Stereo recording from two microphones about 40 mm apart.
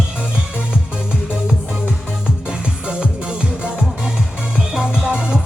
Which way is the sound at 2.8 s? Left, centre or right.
Right.